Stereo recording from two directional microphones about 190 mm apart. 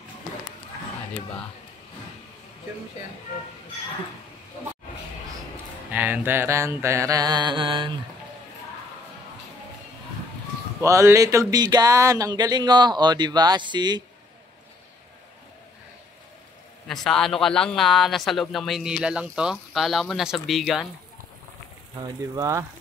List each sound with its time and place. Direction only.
5.9 s mantra: 10° right (ahead or behind); by 7.9 s 25° right (ahead or behind)
10.8 s speech: 15° right (ahead or behind)
16.8 s a man's voice: centre (ahead or behind)
22.0 s mantra: 20° right (ahead or behind)